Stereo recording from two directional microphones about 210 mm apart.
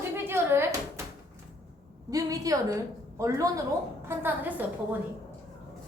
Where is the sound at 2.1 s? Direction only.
15° right (ahead or behind).